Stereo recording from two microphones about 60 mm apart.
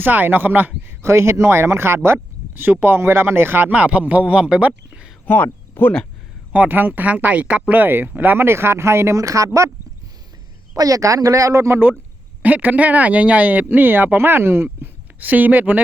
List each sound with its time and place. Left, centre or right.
0.0 s speech: right
0.9 s speech: right
3.7 s speech: right
5.2 s speech: left
6.5 s speech: right
7.7 s speech: right
9.2 s speech: right
10.8 s speech: right
11.7 s speech: right